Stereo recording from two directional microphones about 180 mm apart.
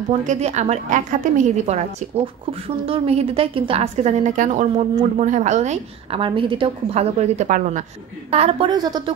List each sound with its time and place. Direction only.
0.3 s a woman's voice: 40° right (ahead or behind)
8.3 s a woman's voice: 35° right (ahead or behind)